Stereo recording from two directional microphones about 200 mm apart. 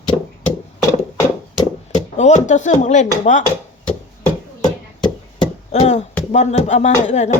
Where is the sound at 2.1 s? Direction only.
35° left (ahead or behind).